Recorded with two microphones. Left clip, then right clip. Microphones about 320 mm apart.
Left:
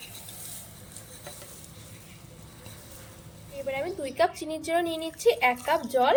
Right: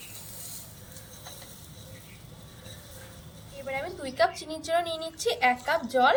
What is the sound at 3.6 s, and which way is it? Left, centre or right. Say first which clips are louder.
A woman's voice: left 2 dB; centre.